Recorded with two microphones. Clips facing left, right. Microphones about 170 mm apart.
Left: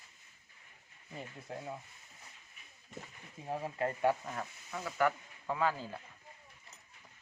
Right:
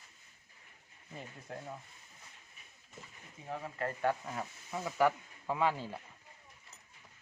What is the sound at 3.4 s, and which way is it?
Speech, 25° left (ahead or behind).